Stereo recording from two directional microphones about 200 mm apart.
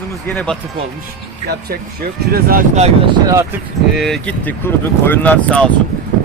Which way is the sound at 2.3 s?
50° right (ahead or behind).